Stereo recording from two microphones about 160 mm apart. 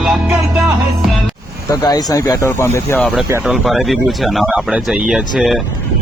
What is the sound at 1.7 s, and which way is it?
Speech, 20° left (ahead or behind).